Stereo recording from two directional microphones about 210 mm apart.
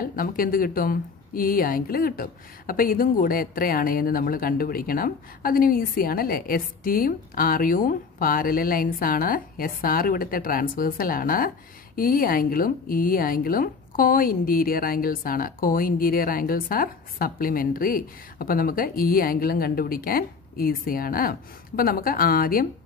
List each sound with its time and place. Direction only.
0.0 s a woman's voice: 45° left (ahead or behind)